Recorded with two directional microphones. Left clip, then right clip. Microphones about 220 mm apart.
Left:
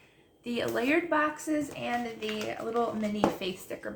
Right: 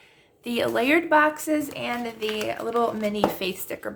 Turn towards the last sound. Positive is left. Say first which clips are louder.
# right 6 dB
turn(degrees=-45)  # may be behind; listen again after turning